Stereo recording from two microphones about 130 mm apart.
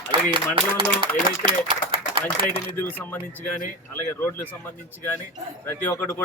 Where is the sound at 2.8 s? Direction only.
15° left (ahead or behind).